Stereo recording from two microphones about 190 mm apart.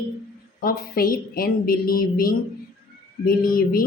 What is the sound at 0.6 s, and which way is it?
Speech, 50° left (ahead or behind).